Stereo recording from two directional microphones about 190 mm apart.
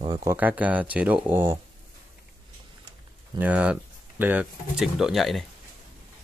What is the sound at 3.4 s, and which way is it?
Speech, 5° right (ahead or behind).